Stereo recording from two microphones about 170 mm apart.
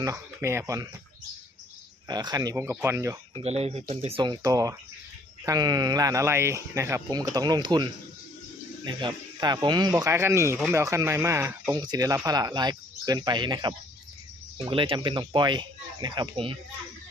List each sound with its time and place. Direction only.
0.0 s speech: 15° right (ahead or behind)
2.0 s speech: 25° right (ahead or behind)
3.4 s speech: 40° right (ahead or behind)